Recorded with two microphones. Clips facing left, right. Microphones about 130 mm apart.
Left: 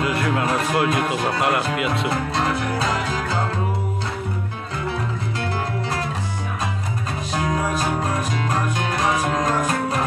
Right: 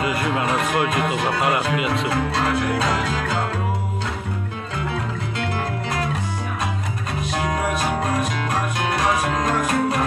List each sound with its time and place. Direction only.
0.0 s speech: centre (ahead or behind)
7.7 s music: 30° left (ahead or behind)